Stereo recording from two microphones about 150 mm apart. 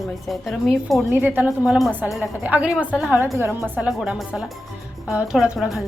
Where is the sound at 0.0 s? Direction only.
Centre (ahead or behind).